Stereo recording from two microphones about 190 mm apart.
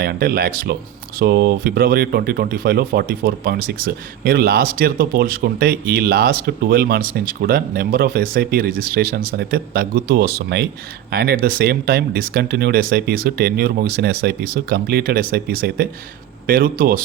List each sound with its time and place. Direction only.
0.0 s speech: 55° right (ahead or behind)